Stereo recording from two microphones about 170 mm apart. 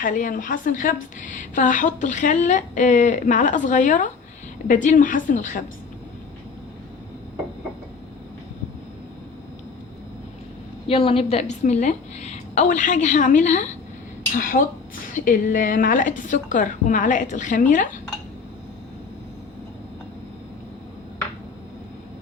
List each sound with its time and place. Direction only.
0.0 s a woman's voice: 50° left (ahead or behind)
10.8 s a woman's voice: 35° left (ahead or behind); by 17.8 s 50° left (ahead or behind)